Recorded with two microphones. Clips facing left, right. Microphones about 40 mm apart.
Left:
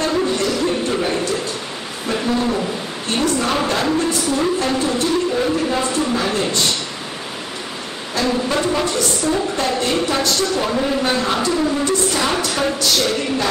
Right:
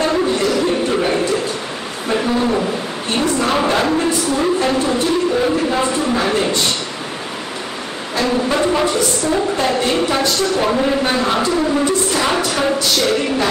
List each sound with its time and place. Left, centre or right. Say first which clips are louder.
0.0 s music: right 2 dB; centre
0.8 s a sound: right 3 dB; centre
8.2 s a woman's voice: right 2 dB; centre